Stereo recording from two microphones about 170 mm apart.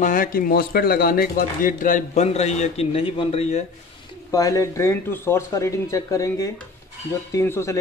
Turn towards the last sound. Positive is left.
turn(degrees=15)  # may be behind; listen again after turning